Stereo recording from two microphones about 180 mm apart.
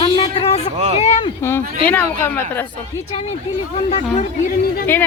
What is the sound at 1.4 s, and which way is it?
Speech, 15° left (ahead or behind).